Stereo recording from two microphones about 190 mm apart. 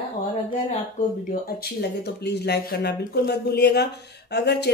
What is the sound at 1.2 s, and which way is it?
Speech, 55° left (ahead or behind).